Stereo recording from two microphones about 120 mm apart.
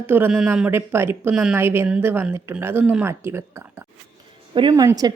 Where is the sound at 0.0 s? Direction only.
15° right (ahead or behind).